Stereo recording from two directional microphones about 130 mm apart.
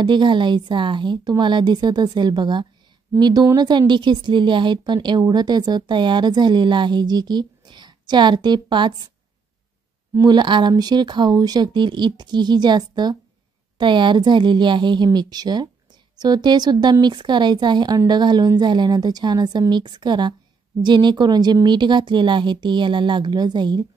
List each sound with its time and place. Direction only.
0.0 s speech: 35° right (ahead or behind)
10.2 s speech: 35° right (ahead or behind)